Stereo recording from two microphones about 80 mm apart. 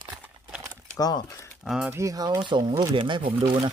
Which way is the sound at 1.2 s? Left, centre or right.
Left.